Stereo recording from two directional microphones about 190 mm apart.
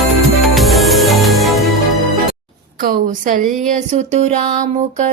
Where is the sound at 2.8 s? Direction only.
45° right (ahead or behind).